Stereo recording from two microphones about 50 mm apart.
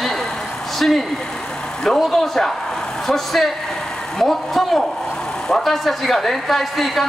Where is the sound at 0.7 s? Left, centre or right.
Centre.